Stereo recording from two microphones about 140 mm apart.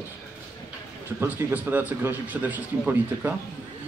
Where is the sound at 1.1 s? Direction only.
15° right (ahead or behind).